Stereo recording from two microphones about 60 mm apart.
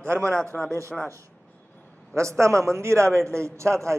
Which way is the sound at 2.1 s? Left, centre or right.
Right.